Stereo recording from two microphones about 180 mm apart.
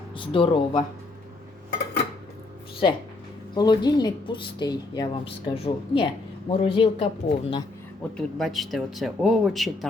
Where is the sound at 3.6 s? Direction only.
25° left (ahead or behind).